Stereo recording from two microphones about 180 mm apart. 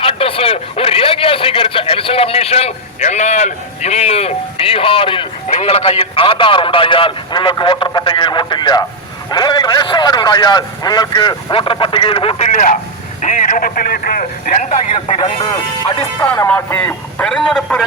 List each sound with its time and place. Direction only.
0.0 s a man's voice: 30° left (ahead or behind)
12.5 s speech: 45° left (ahead or behind)
16.0 s a man's voice: 15° left (ahead or behind)